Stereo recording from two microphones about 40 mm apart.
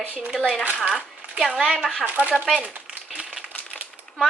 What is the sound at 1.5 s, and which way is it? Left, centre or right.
Speech, right.